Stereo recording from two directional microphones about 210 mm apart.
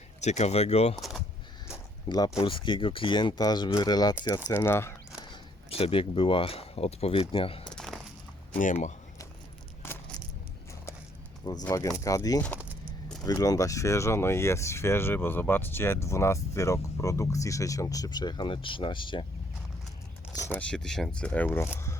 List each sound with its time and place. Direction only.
0.2 s speech: 30° left (ahead or behind)
2.0 s speech: 20° left (ahead or behind)
5.3 s speech: 25° left (ahead or behind)
7.7 s a sound: centre (ahead or behind)
8.5 s speech: 35° left (ahead or behind)
9.8 s a sound: 10° left (ahead or behind)
11.6 s speech: 15° left (ahead or behind)
20.5 s speech: 5° left (ahead or behind)